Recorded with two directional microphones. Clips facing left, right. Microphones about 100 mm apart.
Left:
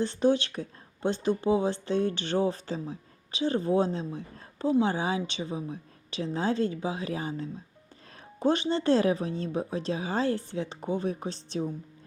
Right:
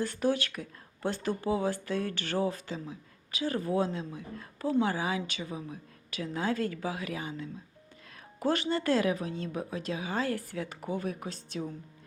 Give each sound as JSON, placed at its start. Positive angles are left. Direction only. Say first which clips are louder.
{"t": 0.0, "sound": "speech", "louder": "left 5 dB", "side_deg": 25}
{"t": 8.1, "sound": "speech", "louder": "left 4 dB", "side_deg": 25}